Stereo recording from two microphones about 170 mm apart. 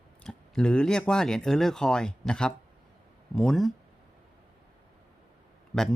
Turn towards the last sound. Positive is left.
turn(degrees=-5)  # may be behind; listen again after turning